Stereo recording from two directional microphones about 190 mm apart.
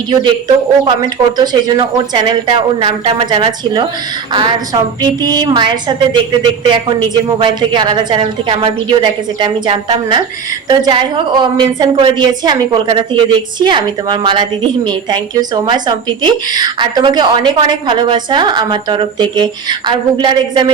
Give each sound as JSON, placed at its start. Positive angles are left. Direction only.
{"t": 0.1, "sound": "a woman's voice", "side_deg": -25}
{"t": 1.4, "sound": "a woman's voice", "side_deg": -25}